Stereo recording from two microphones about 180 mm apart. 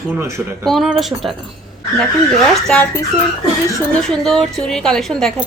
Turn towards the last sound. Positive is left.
turn(degrees=0)  # may be behind; listen again after turning